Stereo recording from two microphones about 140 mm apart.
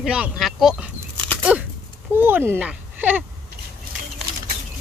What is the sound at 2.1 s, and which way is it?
Speech, 15° right (ahead or behind).